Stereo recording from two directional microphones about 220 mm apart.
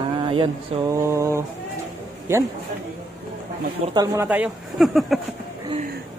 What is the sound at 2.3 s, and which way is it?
Speech, 10° right (ahead or behind).